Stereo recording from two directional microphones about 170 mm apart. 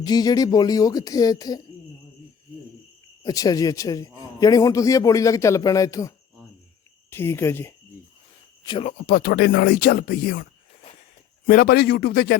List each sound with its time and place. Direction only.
0.0 s a man's voice: 25° left (ahead or behind)
3.2 s a man's voice: 20° left (ahead or behind)
8.6 s speech: 30° left (ahead or behind)
8.9 s speech: 55° left (ahead or behind)
11.4 s speech: 60° left (ahead or behind)